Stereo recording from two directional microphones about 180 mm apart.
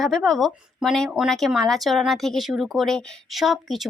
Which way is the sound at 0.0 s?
Centre (ahead or behind).